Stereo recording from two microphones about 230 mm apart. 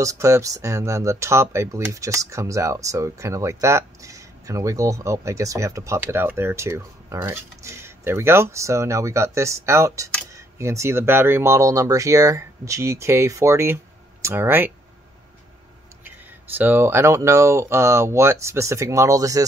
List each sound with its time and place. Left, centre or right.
0.0 s speech: centre
16.5 s speech: centre